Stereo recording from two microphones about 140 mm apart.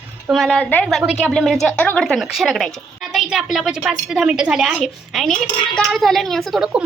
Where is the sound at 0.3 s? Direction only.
Centre (ahead or behind).